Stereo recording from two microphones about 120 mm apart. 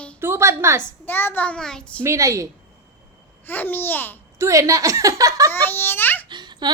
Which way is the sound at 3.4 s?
15° left (ahead or behind).